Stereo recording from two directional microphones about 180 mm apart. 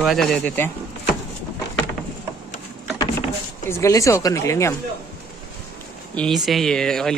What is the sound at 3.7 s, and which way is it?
Speech, 15° left (ahead or behind).